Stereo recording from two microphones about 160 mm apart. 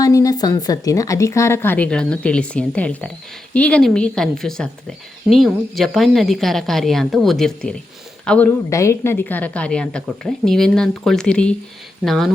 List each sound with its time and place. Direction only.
0.0 s a woman's voice: 20° left (ahead or behind); by 12.3 s centre (ahead or behind)